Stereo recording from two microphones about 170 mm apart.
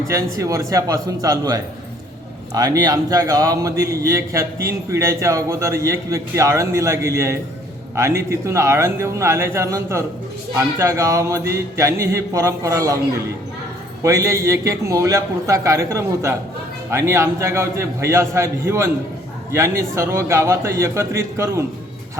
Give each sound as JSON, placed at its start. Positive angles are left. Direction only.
{"t": 0.1, "sound": "a man's voice", "side_deg": -15}
{"t": 14.0, "sound": "a man's voice", "side_deg": -20}